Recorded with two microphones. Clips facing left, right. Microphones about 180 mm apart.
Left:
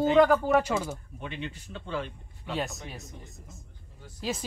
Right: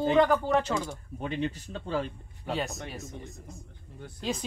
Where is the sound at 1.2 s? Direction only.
40° right (ahead or behind).